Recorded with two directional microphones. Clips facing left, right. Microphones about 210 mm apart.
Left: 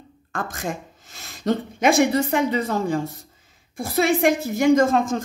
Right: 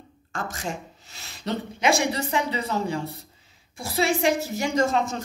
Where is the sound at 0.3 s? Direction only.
55° left (ahead or behind).